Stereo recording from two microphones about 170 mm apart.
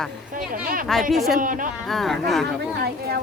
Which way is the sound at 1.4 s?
50° right (ahead or behind).